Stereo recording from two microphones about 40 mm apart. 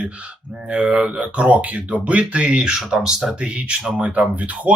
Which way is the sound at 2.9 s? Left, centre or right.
Centre.